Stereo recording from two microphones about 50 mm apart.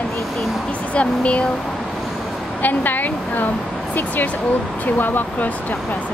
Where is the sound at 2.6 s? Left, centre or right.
Left.